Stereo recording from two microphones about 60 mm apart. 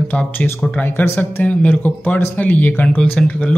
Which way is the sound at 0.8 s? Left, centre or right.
Left.